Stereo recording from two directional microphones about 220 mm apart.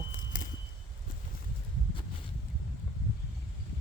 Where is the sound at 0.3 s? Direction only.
35° left (ahead or behind).